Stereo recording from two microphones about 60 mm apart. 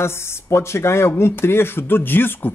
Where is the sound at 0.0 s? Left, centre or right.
Left.